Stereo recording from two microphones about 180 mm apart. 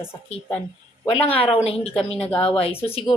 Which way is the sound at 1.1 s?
30° left (ahead or behind).